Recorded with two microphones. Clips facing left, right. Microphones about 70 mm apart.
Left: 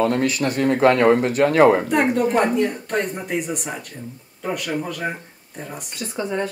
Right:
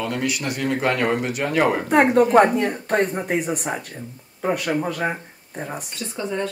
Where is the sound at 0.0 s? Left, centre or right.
Left.